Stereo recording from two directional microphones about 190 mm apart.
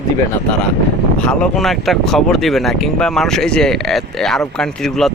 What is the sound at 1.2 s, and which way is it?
Speech, 5° left (ahead or behind).